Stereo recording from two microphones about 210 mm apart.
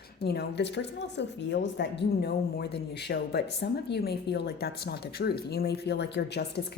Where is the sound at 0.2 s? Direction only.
50° left (ahead or behind).